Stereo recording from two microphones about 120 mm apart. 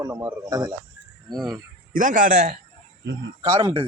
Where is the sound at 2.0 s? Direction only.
90° right.